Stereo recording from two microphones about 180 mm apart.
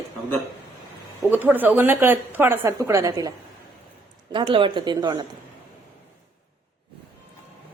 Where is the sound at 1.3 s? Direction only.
10° right (ahead or behind).